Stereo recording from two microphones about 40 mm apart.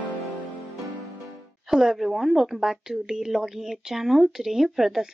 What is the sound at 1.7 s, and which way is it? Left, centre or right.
Speech, centre.